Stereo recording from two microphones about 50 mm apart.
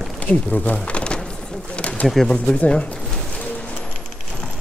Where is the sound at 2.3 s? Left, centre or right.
Left.